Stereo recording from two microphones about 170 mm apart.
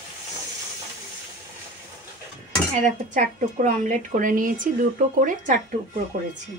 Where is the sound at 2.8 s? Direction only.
45° right (ahead or behind).